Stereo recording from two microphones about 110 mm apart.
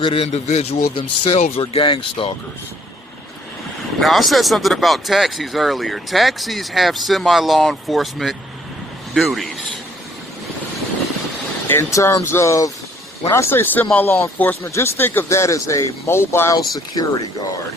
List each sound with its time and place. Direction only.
0.0 s speech: 55° left (ahead or behind)
0.3 s a man's voice: 70° left (ahead or behind); by 2.3 s 55° left (ahead or behind)
4.0 s speech: centre (ahead or behind)
11.7 s speech: 25° left (ahead or behind)
16.6 s speech: 35° left (ahead or behind)